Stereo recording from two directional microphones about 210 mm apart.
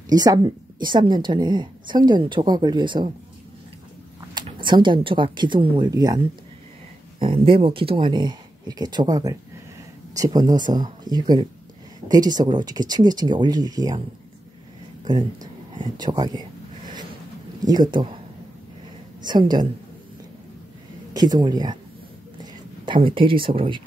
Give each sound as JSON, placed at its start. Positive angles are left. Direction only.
{"t": 0.1, "sound": "a woman's voice", "side_deg": -20}
{"t": 4.3, "sound": "a woman's voice", "side_deg": -20}
{"t": 15.0, "sound": "a sound", "side_deg": -20}
{"t": 17.6, "sound": "a woman's voice", "side_deg": -20}
{"t": 19.2, "sound": "a woman's voice", "side_deg": -20}
{"t": 21.1, "sound": "speech", "side_deg": -20}